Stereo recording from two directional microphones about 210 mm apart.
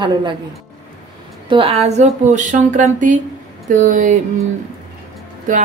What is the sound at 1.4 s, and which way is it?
Speech, 25° right (ahead or behind).